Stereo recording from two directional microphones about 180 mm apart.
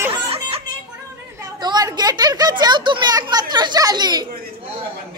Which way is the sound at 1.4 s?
20° right (ahead or behind).